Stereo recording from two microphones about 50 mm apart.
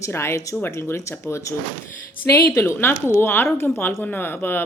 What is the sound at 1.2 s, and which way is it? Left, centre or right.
Speech, left.